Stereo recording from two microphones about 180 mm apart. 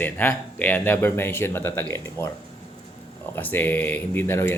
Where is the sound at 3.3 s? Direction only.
10° left (ahead or behind).